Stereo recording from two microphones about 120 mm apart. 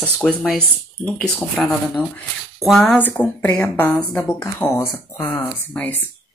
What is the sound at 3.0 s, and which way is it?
A woman's voice, 15° left (ahead or behind).